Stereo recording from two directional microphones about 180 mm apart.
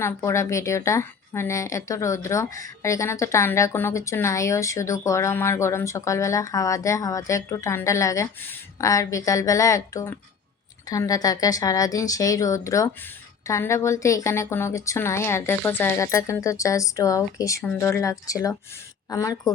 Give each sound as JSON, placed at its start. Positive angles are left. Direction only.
{"t": 0.0, "sound": "a woman's voice", "side_deg": 15}